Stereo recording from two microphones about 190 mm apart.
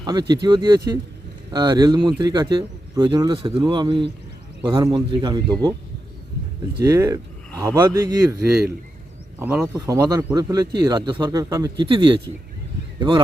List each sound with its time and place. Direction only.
0.0 s speech: 20° right (ahead or behind)
6.8 s a man's voice: 15° right (ahead or behind)
9.4 s a man's voice: 5° right (ahead or behind)
9.7 s speech: 20° right (ahead or behind)